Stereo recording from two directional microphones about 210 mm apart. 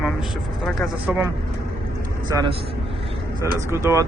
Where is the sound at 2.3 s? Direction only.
20° right (ahead or behind).